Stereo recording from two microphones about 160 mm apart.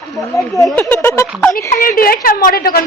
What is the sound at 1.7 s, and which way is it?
A woman's voice, 60° left (ahead or behind).